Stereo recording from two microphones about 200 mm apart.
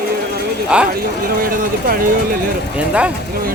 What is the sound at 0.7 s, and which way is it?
Speech, 5° right (ahead or behind).